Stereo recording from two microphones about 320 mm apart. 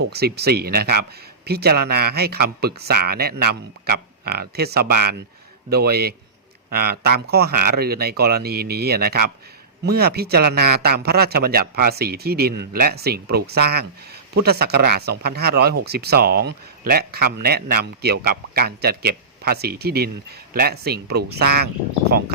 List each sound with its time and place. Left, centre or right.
0.0 s speech: right